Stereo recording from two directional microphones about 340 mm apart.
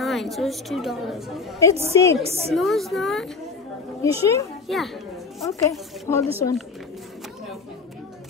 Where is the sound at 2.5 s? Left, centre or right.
Centre.